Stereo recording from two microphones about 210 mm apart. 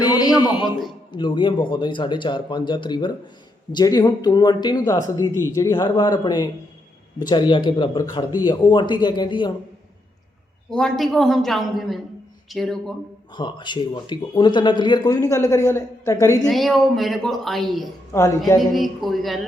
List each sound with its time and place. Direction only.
0.0 s a sound: 20° left (ahead or behind)
1.1 s speech: 20° left (ahead or behind)
10.7 s speech: centre (ahead or behind)
13.3 s speech: 20° left (ahead or behind)
16.5 s speech: centre (ahead or behind)
18.1 s speech: 15° left (ahead or behind)
18.7 s speech: centre (ahead or behind)